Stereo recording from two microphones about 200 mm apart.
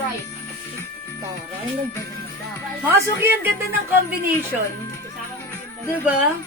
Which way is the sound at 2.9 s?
10° right (ahead or behind).